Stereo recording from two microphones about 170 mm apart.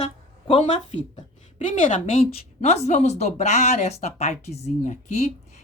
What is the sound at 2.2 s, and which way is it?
Speech, 40° left (ahead or behind).